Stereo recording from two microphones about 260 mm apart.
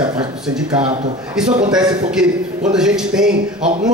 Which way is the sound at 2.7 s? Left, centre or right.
Centre.